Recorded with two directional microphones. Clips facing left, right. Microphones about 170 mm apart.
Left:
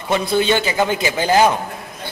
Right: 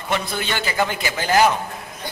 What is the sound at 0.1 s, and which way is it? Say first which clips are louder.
A man's voice: left 8 dB; 20° left (ahead or behind).